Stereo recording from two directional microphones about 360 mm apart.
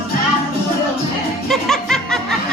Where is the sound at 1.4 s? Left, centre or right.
Centre.